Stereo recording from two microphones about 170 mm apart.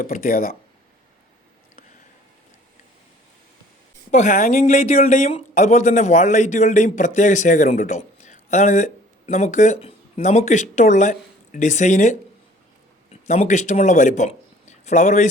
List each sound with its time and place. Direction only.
0.0 s speech: 55° left (ahead or behind)
4.1 s speech: 45° left (ahead or behind)